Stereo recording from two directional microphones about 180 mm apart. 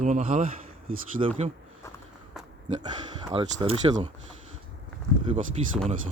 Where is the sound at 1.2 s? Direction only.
35° right (ahead or behind).